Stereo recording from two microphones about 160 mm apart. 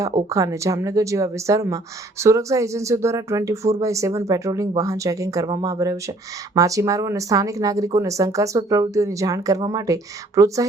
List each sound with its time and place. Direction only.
0.3 s a woman's voice: 20° right (ahead or behind)